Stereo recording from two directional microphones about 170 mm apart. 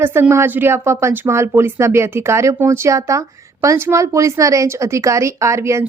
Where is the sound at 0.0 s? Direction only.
15° right (ahead or behind).